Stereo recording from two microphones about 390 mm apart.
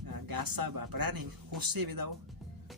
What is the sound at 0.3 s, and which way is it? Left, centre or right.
Speech, right.